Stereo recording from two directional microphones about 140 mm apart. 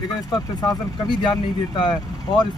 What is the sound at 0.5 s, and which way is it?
Speech, 30° left (ahead or behind).